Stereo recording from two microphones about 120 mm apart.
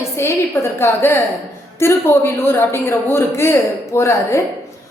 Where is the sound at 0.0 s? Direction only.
20° left (ahead or behind).